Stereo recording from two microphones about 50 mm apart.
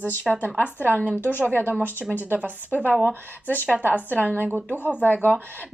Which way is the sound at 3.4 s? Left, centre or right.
Left.